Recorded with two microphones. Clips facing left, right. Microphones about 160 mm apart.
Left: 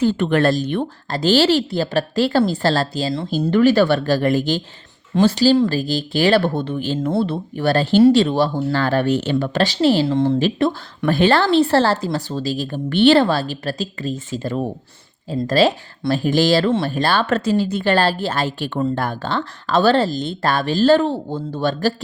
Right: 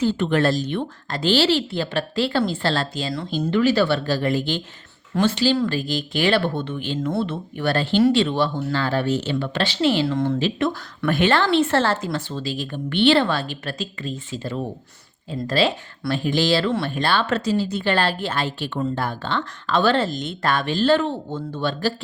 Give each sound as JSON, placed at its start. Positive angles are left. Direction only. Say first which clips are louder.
{"t": 0.0, "sound": "a woman's voice", "louder": "left 3 dB", "side_deg": 55}
{"t": 3.5, "sound": "a woman's voice", "louder": "left 4 dB", "side_deg": 45}
{"t": 8.8, "sound": "speech", "louder": "left 4 dB", "side_deg": 55}
{"t": 9.3, "sound": "a woman's voice", "louder": "left 5 dB", "side_deg": 40}
{"t": 10.3, "sound": "speech", "louder": "left 4 dB", "side_deg": 45}
{"t": 10.7, "sound": "a woman's voice", "louder": "left 3 dB", "side_deg": 35}